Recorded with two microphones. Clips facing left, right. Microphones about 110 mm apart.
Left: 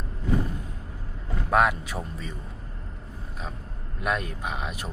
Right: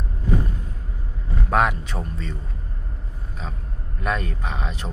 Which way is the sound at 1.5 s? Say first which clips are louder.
Right 1 dB; centre (ahead or behind).